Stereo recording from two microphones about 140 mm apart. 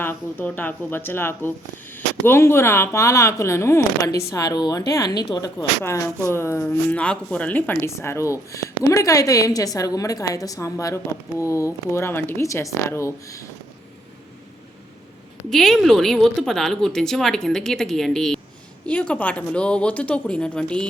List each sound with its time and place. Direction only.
0.0 s speech: 15° left (ahead or behind)
15.4 s a woman's voice: centre (ahead or behind)